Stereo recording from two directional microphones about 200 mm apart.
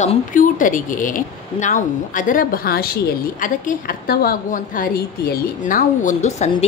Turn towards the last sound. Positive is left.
turn(degrees=35)  # may be behind; listen again after turning